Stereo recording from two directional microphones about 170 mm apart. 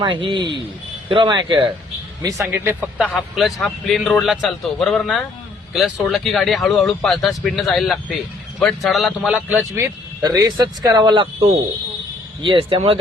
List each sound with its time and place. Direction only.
0.0 s speech: 30° right (ahead or behind)
2.2 s speech: 15° right (ahead or behind)
10.2 s speech: 20° right (ahead or behind)